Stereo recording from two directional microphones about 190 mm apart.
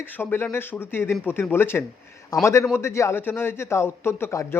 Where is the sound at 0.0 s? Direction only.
10° left (ahead or behind).